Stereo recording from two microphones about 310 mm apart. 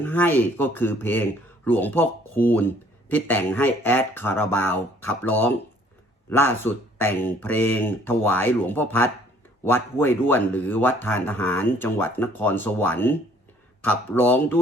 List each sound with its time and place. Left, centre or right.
0.0 s speech: centre